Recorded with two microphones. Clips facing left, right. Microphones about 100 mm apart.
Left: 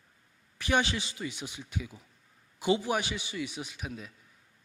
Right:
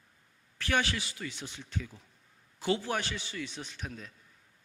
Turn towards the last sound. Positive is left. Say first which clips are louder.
# left 2 dB
turn(degrees=5)  # may be behind; listen again after turning